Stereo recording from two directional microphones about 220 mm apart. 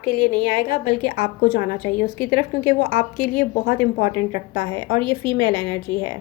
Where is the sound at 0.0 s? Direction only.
25° right (ahead or behind).